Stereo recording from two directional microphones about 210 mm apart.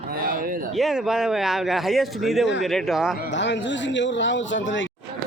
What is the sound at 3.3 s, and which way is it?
Speech, 60° left (ahead or behind).